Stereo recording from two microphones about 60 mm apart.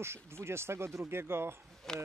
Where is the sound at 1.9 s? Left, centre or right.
Centre.